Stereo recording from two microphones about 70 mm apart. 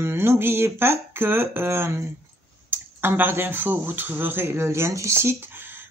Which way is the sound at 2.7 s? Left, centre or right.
Right.